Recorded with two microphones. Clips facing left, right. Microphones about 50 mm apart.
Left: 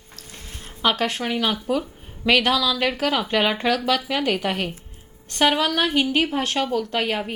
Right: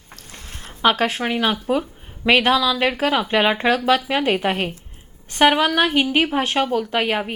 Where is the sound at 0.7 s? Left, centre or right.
Right.